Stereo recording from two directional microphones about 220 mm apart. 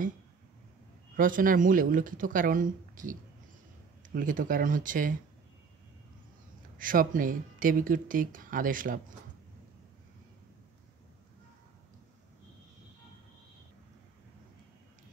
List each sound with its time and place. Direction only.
1.1 s speech: 40° right (ahead or behind)
6.8 s speech: 40° right (ahead or behind)